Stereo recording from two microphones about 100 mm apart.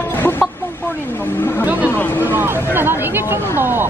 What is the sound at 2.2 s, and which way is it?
Speech, 20° right (ahead or behind).